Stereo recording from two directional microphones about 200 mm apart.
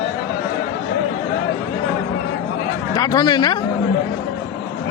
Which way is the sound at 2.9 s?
20° left (ahead or behind).